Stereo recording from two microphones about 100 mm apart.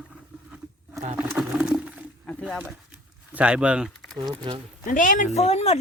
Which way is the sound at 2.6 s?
15° right (ahead or behind).